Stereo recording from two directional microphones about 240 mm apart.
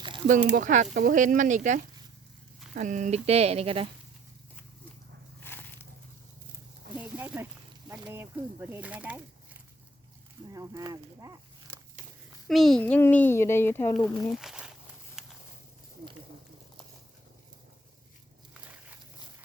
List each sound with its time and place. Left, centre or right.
0.5 s speech: right
5.4 s a sound: centre
6.9 s a sound: centre
7.9 s speech: centre
10.5 s speech: centre
12.5 s speech: centre